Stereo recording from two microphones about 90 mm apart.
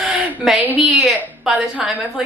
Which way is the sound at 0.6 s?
15° right (ahead or behind).